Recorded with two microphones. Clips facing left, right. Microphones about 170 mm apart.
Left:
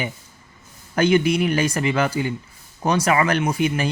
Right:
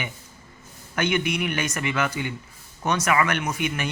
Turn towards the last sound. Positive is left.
turn(degrees=30)  # may be behind; listen again after turning